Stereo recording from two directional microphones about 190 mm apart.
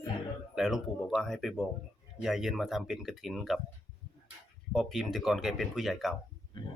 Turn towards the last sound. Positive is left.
turn(degrees=25)  # may be behind; listen again after turning